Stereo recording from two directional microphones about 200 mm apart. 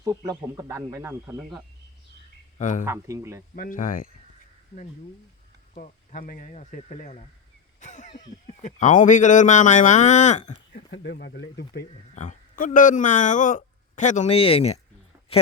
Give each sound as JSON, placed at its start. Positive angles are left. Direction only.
{"t": 0.0, "sound": "speech", "side_deg": -15}
{"t": 2.6, "sound": "speech", "side_deg": 40}
{"t": 2.8, "sound": "speech", "side_deg": -15}
{"t": 3.5, "sound": "speech", "side_deg": 45}
{"t": 5.7, "sound": "speech", "side_deg": 40}
{"t": 10.8, "sound": "speech", "side_deg": 60}
{"t": 12.1, "sound": "speech", "side_deg": 40}